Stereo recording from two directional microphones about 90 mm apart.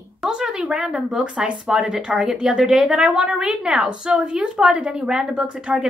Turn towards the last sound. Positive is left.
turn(degrees=-5)  # may be behind; listen again after turning